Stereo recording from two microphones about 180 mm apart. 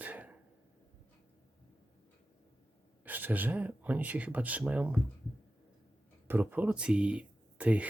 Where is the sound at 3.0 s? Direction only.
10° right (ahead or behind).